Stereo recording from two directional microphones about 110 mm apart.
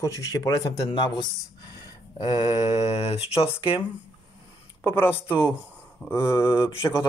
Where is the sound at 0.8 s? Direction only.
45° left (ahead or behind).